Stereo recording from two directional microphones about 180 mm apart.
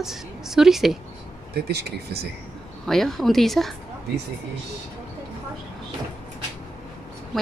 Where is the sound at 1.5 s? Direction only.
65° right (ahead or behind).